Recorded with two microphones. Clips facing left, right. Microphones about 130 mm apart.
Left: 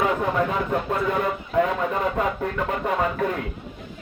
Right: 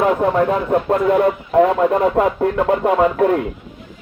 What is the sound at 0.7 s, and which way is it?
Speech, 40° right (ahead or behind).